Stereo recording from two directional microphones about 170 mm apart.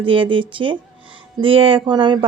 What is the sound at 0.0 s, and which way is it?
Speech, 30° right (ahead or behind).